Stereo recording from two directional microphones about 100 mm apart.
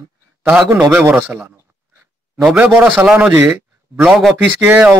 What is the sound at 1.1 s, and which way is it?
Speech, 10° right (ahead or behind).